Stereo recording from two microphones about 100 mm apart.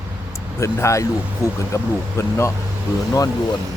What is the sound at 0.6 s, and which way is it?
Speech, 30° left (ahead or behind).